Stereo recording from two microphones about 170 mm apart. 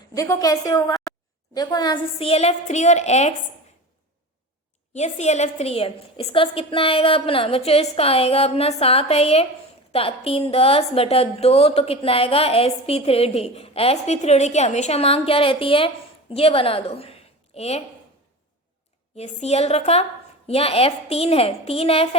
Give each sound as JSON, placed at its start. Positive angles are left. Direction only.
{"t": 0.1, "sound": "a woman's voice", "side_deg": 20}
{"t": 4.9, "sound": "a woman's voice", "side_deg": 40}
{"t": 19.1, "sound": "a woman's voice", "side_deg": 40}